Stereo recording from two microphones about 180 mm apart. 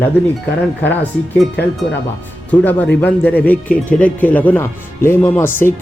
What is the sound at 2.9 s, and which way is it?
Speech, 10° left (ahead or behind).